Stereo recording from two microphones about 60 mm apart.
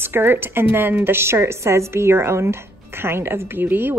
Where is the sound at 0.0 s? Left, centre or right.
Right.